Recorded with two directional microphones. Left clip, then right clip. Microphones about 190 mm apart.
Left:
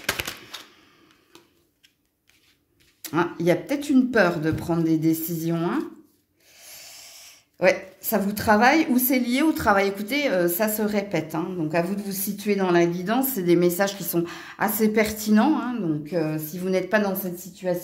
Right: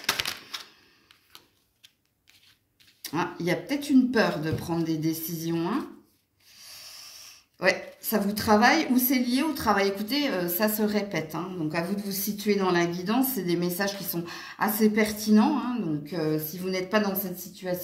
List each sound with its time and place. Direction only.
3.0 s a woman's voice: 50° left (ahead or behind)
17.6 s a woman's voice: 40° left (ahead or behind)